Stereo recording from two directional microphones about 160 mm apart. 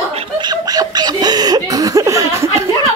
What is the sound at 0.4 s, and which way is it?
Chuckle, 25° right (ahead or behind).